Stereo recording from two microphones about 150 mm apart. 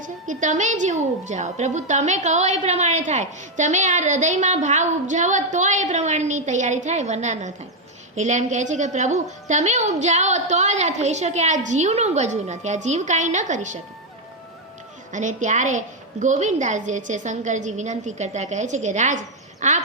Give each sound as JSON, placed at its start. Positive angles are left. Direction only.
{"t": 0.0, "sound": "a woman's voice", "side_deg": -55}
{"t": 15.1, "sound": "a woman's voice", "side_deg": -55}